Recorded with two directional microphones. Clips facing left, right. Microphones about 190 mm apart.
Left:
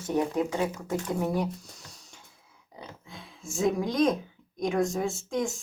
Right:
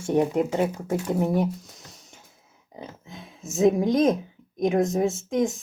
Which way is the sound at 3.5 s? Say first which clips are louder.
Right 7 dB; 20° right (ahead or behind).